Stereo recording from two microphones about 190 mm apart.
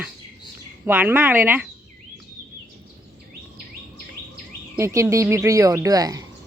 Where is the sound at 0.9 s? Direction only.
10° right (ahead or behind).